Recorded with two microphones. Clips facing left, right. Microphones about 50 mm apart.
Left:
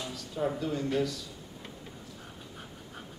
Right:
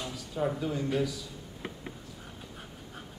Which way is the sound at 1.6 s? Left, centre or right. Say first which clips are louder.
Right 8 dB; right.